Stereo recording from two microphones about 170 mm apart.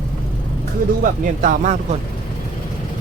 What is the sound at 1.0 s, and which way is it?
Speech, 50° right (ahead or behind).